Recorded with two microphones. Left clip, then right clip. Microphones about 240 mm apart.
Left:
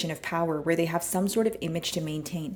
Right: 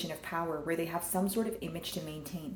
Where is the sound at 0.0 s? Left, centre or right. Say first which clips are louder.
Left 7 dB; left.